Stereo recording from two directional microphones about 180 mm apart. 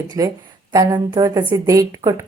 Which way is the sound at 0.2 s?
15° right (ahead or behind).